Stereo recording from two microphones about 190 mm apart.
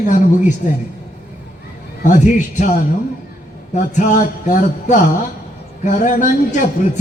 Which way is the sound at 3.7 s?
40° left (ahead or behind).